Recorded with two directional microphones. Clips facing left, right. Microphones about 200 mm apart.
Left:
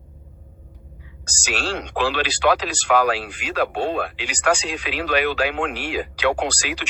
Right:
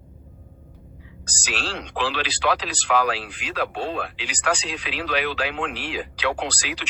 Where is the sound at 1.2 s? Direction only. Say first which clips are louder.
Left 4 dB; 45° left (ahead or behind).